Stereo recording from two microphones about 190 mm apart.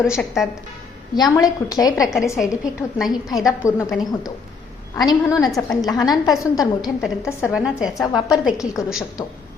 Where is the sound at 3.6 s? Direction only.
15° left (ahead or behind).